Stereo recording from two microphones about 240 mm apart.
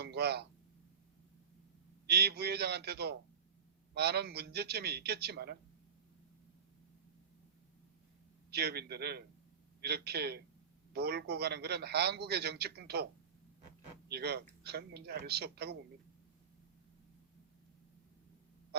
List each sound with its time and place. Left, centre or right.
0.0 s speech: right
2.0 s a man's voice: right
8.4 s a man's voice: right
14.1 s a man's voice: right